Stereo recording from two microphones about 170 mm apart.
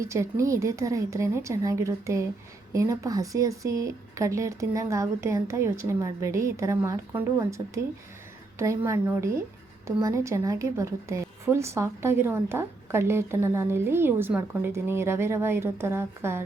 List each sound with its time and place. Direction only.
0.0 s a woman's voice: 15° right (ahead or behind)